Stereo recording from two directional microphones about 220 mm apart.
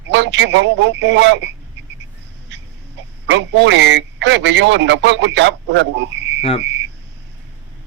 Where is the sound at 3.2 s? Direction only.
55° right (ahead or behind).